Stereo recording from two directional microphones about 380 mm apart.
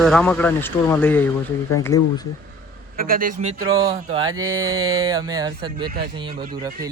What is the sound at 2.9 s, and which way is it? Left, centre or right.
Speech, right.